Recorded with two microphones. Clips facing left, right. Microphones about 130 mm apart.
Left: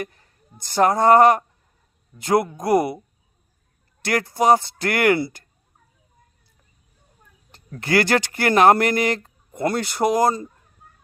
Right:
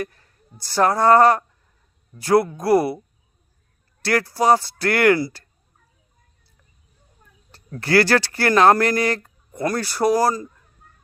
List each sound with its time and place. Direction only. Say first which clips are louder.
0.0 s speech: right 2 dB; 20° left (ahead or behind)
4.0 s speech: even; 20° left (ahead or behind)
7.8 s speech: right 2 dB; 20° left (ahead or behind)